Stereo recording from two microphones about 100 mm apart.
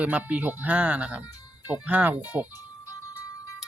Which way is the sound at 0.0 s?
15° right (ahead or behind).